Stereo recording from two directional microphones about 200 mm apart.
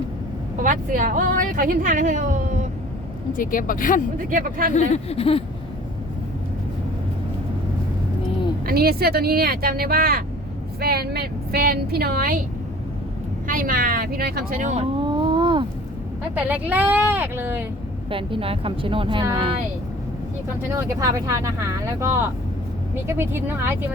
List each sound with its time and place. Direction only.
0.6 s a woman's voice: 40° right (ahead or behind)
3.3 s speech: 45° left (ahead or behind)
4.3 s speech: 45° right (ahead or behind)
4.7 s speech: 30° left (ahead or behind)
8.6 s speech: 50° right (ahead or behind)
13.5 s speech: 45° right (ahead or behind)
14.9 s a sound: 25° right (ahead or behind)
16.5 s speech: 10° right (ahead or behind)
18.1 s speech: 25° right (ahead or behind)
20.7 s speech: 15° right (ahead or behind)